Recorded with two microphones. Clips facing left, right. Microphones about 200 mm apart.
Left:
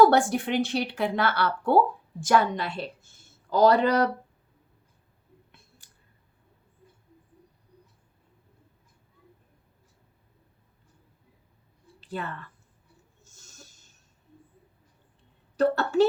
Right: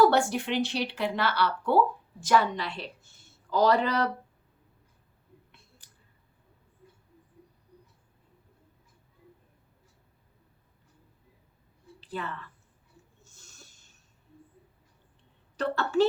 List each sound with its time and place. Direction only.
0.0 s a woman's voice: 50° left (ahead or behind)
13.2 s a sound: 45° left (ahead or behind)
15.5 s a woman's voice: 40° left (ahead or behind)